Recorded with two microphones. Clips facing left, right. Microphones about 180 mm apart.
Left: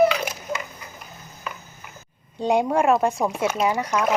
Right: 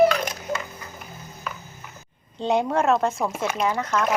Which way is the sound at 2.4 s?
10° left (ahead or behind).